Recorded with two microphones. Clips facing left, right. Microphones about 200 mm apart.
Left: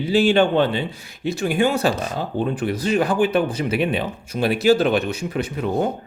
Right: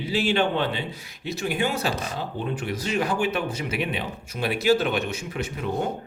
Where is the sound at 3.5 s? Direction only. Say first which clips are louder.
Left 7 dB; 35° left (ahead or behind).